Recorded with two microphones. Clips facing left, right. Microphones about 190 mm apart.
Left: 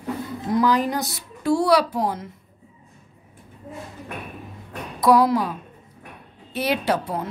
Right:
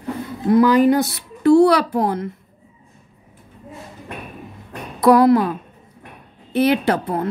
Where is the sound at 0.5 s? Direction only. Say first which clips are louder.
Right 7 dB; 65° right (ahead or behind).